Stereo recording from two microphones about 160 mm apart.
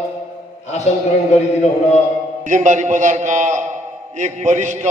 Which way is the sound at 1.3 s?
45° left (ahead or behind).